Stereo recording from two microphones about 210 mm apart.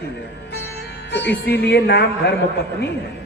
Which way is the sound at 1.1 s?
50° left (ahead or behind).